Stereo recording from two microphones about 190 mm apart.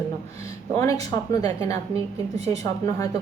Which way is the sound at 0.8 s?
15° left (ahead or behind).